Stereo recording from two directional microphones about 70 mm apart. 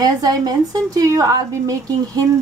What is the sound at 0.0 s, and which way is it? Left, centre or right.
Speech, right.